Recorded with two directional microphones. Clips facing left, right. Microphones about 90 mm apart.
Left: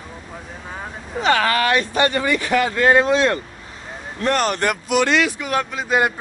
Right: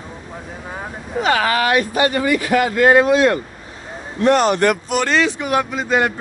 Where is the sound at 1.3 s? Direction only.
20° right (ahead or behind).